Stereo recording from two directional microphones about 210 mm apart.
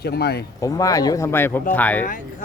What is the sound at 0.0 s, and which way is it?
Speech, 50° left (ahead or behind).